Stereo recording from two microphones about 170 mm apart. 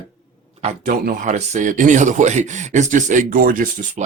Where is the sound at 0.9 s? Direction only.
50° right (ahead or behind).